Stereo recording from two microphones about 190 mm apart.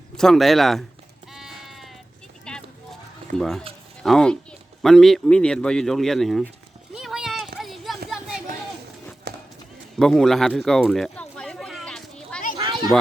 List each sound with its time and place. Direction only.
0.2 s speech: centre (ahead or behind)
1.3 s sheep: centre (ahead or behind)
2.4 s vehicle: 5° left (ahead or behind)
3.3 s speech: centre (ahead or behind)
6.9 s a sound: 5° right (ahead or behind)
9.3 s horse: 60° right (ahead or behind)
10.0 s speech: centre (ahead or behind)
10.7 s children playing: centre (ahead or behind)
12.5 s a sound: 20° right (ahead or behind)